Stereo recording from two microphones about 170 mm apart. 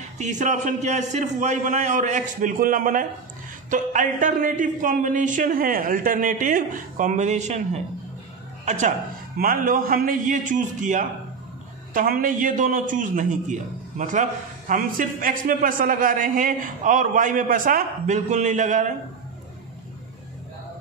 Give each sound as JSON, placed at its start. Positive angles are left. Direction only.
{"t": 0.2, "sound": "a man's voice", "side_deg": -45}
{"t": 9.4, "sound": "a man's voice", "side_deg": -60}